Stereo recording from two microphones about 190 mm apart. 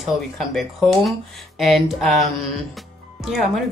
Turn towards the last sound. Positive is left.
turn(degrees=0)  # may be behind; listen again after turning